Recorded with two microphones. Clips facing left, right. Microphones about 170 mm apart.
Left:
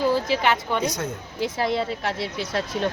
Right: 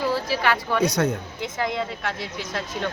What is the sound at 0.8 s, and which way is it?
Speech, 65° right (ahead or behind).